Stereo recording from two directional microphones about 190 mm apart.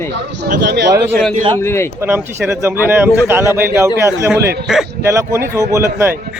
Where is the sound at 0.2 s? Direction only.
65° right (ahead or behind).